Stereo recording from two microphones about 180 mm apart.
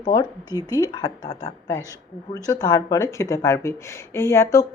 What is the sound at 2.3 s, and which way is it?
A woman's voice, 20° left (ahead or behind).